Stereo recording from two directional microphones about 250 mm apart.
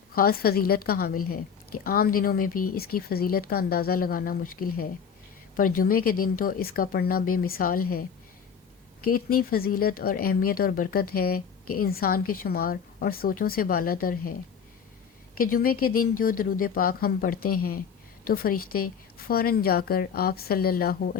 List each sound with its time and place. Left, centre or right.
0.1 s speech: left
9.3 s speech: left
15.4 s speech: left